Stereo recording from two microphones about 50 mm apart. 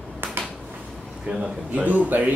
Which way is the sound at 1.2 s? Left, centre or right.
Right.